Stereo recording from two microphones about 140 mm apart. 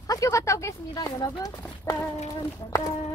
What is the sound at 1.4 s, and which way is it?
Speech, 25° left (ahead or behind).